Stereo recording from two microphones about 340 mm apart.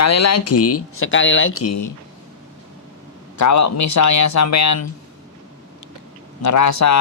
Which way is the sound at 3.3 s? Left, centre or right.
Left.